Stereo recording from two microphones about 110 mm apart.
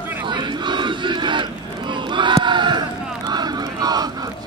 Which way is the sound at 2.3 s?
45° right (ahead or behind).